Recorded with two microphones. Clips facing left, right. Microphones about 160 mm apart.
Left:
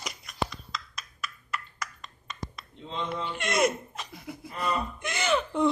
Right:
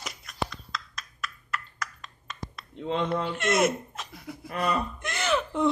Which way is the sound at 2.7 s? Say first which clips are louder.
Right 7 dB; 60° right (ahead or behind).